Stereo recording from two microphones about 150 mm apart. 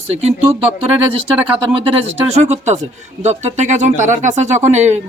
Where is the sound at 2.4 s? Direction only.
45° right (ahead or behind).